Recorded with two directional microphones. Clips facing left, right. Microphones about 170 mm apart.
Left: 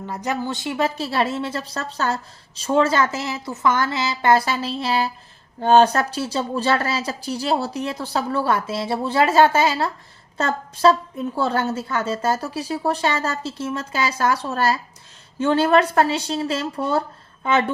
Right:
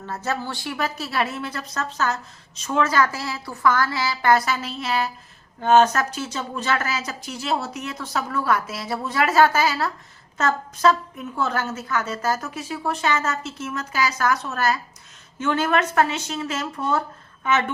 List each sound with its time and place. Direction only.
0.0 s a woman's voice: 15° left (ahead or behind); by 17.7 s 30° left (ahead or behind)